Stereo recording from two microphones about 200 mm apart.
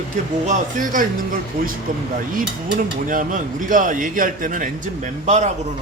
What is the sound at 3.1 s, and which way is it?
A man's voice, 40° right (ahead or behind).